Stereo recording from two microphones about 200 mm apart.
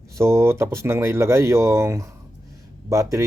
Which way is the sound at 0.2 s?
15° right (ahead or behind).